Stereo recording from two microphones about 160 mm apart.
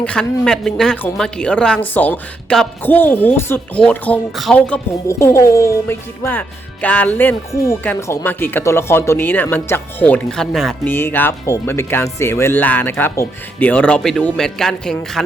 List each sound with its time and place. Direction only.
0.0 s speech: 5° left (ahead or behind)
5.0 s speech: 20° left (ahead or behind); by 10.8 s centre (ahead or behind)
10.8 s speech: 15° left (ahead or behind)